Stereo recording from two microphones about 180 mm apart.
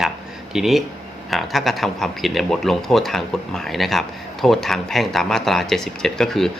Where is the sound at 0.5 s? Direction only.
Centre (ahead or behind).